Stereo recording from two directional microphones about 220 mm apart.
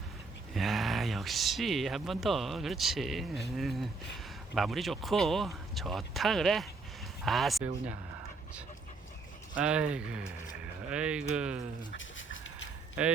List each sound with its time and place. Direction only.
0.5 s speech: centre (ahead or behind)
9.6 s speech: 5° right (ahead or behind)
11.9 s a sound: 60° left (ahead or behind)
13.0 s speech: 5° right (ahead or behind)